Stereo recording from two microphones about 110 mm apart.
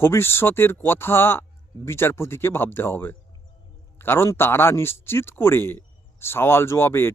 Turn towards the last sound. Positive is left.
turn(degrees=20)  # may be behind; listen again after turning